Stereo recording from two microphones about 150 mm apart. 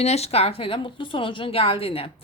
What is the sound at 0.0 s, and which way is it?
Speech, 45° left (ahead or behind).